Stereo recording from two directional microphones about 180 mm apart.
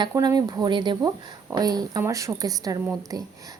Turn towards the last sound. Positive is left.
turn(degrees=-15)  # may be behind; listen again after turning